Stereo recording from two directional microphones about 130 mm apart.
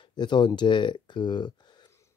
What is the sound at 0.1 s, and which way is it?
Speech, 35° left (ahead or behind).